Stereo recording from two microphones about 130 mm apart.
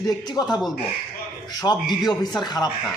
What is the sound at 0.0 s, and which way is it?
Speech, 30° left (ahead or behind).